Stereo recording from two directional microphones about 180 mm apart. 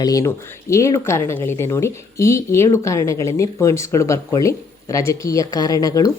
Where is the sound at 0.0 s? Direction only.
20° left (ahead or behind).